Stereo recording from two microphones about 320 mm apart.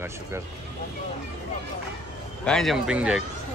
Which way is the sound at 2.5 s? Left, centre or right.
Centre.